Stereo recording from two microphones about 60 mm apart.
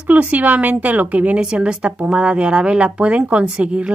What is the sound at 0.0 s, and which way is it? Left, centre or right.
Speech, right.